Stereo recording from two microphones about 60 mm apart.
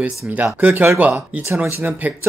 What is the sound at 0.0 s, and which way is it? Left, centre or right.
Speech, right.